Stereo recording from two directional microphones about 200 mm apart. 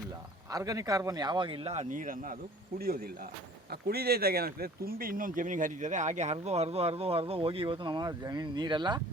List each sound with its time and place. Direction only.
0.5 s speech: 15° right (ahead or behind)